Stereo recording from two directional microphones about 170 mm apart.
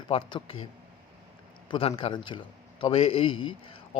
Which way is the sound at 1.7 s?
35° left (ahead or behind).